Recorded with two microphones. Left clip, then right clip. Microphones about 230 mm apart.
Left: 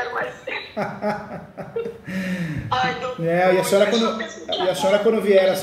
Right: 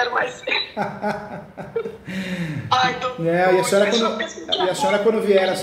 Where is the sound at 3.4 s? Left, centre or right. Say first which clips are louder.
Even; right.